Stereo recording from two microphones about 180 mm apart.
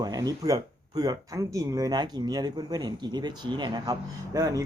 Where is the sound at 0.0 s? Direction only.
20° right (ahead or behind).